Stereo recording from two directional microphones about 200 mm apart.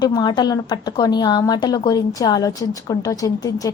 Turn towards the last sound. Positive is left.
turn(degrees=15)  # may be behind; listen again after turning